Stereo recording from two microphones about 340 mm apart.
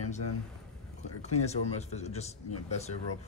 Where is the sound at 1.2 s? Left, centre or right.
Centre.